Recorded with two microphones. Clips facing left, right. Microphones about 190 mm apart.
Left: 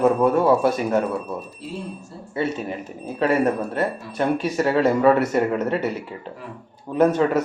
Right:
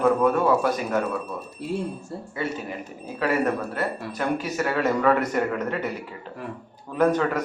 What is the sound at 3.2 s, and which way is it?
A man's voice, 30° left (ahead or behind).